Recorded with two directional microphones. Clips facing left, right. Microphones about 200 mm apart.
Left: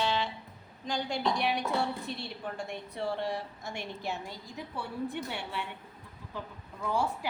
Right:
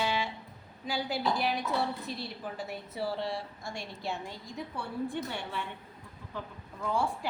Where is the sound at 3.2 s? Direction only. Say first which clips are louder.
Left 1 dB; 15° left (ahead or behind).